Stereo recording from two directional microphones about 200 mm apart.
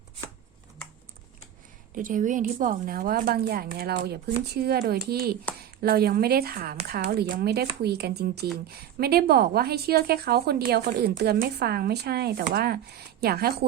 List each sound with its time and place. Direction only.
2.0 s speech: 40° right (ahead or behind)